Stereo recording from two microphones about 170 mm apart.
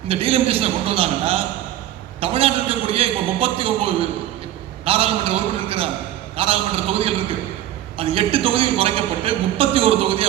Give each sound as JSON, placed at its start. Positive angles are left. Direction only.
{"t": 0.1, "sound": "a man's voice", "side_deg": -35}
{"t": 4.9, "sound": "a man's voice", "side_deg": -35}